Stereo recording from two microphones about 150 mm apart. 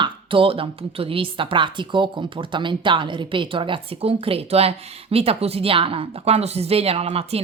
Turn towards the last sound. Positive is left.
turn(degrees=-40)  # may be behind; listen again after turning